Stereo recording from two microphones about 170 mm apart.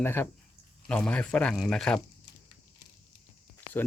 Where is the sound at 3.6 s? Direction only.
10° left (ahead or behind).